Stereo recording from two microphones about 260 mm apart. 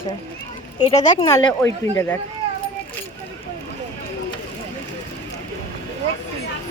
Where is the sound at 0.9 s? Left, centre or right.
Centre.